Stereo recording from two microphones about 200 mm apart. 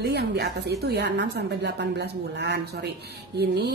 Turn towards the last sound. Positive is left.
turn(degrees=-55)  # may be behind; listen again after turning